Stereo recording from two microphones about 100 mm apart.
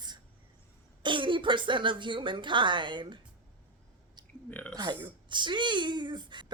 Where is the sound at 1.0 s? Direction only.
55° right (ahead or behind).